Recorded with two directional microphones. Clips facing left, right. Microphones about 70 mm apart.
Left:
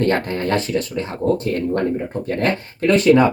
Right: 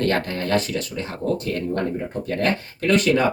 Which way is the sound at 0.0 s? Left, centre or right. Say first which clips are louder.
Left 3 dB; left.